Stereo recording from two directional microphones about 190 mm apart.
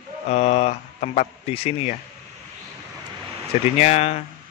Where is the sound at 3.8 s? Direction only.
35° left (ahead or behind).